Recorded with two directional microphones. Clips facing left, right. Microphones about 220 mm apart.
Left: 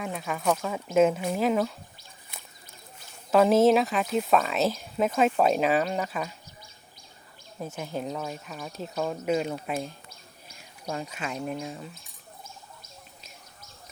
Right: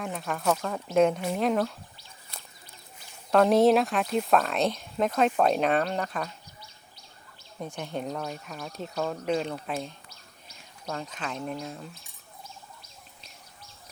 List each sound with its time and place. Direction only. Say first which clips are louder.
0.0 s speech: even; 5° left (ahead or behind)
3.3 s speech: even; centre (ahead or behind)
7.8 s speech: even; centre (ahead or behind)